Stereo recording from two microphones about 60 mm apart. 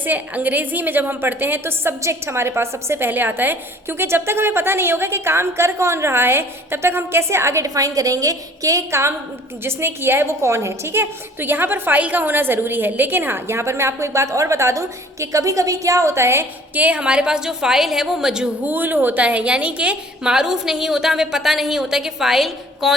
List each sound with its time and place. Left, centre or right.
0.0 s a woman's voice: right
7.7 s a woman's voice: right
8.9 s a woman's voice: right
16.7 s a woman's voice: right
18.6 s a woman's voice: right; by 23.0 s centre